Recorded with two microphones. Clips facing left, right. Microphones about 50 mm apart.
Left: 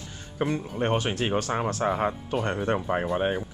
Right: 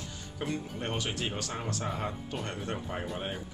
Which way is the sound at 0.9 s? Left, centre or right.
Left.